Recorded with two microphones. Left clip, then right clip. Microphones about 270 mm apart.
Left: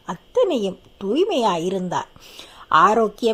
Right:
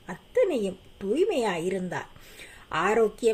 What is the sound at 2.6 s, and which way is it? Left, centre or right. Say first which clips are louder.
Speech: left 9 dB; left.